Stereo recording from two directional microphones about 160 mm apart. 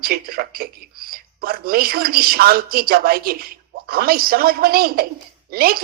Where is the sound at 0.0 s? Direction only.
70° right (ahead or behind).